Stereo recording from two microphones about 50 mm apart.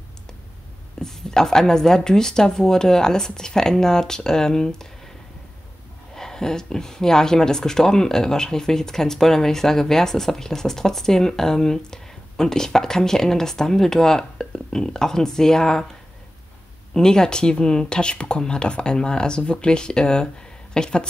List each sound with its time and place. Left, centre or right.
1.0 s speech: centre
6.1 s speech: centre
16.9 s speech: centre